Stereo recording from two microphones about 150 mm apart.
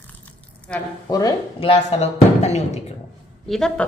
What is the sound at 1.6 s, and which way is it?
Speech, 40° left (ahead or behind).